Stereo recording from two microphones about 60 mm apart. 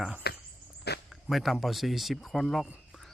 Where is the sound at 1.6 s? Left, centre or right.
Centre.